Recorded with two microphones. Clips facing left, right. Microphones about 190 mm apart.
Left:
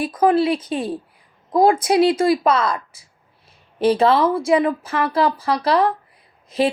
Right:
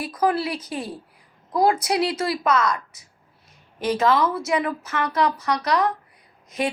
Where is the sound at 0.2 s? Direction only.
25° left (ahead or behind).